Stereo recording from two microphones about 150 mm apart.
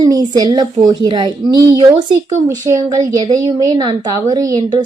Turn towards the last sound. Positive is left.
turn(degrees=-25)  # may be behind; listen again after turning